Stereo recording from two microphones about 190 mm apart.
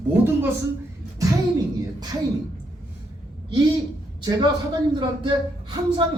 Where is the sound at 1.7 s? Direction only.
20° right (ahead or behind).